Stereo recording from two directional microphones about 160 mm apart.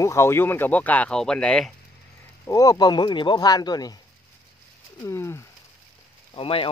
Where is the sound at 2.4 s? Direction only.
20° left (ahead or behind).